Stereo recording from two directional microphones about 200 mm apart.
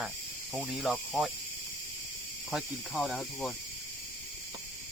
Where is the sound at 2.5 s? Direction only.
Centre (ahead or behind).